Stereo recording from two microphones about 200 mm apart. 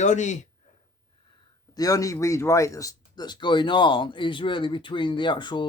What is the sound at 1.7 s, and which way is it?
Speech, 20° left (ahead or behind).